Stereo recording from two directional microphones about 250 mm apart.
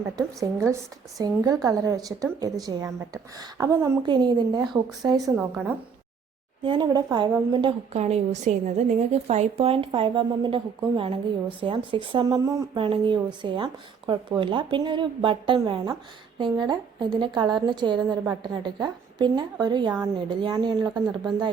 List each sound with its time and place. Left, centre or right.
0.2 s a woman's voice: centre